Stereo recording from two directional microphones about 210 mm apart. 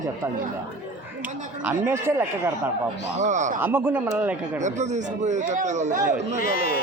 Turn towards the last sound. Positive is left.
turn(degrees=45)  # may be behind; listen again after turning